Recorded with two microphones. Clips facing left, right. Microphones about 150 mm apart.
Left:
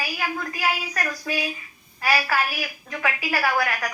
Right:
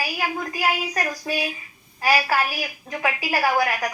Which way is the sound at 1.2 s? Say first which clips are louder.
Right 2 dB; 30° right (ahead or behind).